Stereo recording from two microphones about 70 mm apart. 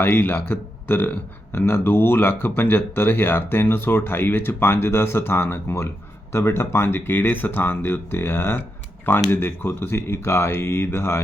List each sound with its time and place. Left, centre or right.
0.0 s speech: left